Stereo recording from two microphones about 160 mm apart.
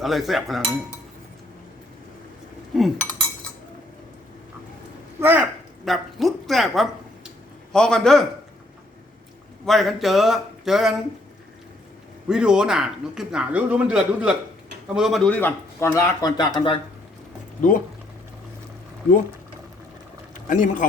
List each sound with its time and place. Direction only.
0.0 s speech: centre (ahead or behind)
2.7 s cutlery: centre (ahead or behind)
5.2 s speech: 10° right (ahead or behind)
5.8 s a woman's voice: centre (ahead or behind)
9.6 s speech: centre (ahead or behind)
12.3 s a man's voice: 5° right (ahead or behind); by 15.9 s 15° left (ahead or behind)
15.9 s speech: 25° left (ahead or behind)
20.5 s speech: 55° left (ahead or behind)